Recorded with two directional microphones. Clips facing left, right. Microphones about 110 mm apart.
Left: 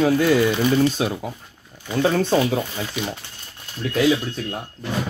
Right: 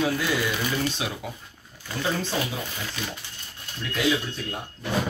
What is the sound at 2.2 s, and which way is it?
Speech, 55° left (ahead or behind).